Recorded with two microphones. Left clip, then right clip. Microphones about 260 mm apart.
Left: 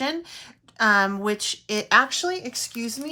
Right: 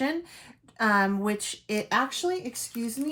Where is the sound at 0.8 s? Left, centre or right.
Centre.